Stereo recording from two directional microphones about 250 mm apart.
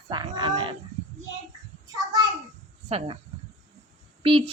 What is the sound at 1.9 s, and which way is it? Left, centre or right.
Child singing, centre.